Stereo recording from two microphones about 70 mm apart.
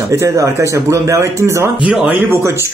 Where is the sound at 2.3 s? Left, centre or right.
Right.